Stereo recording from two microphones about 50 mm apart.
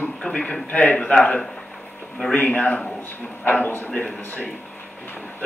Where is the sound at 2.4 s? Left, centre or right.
Left.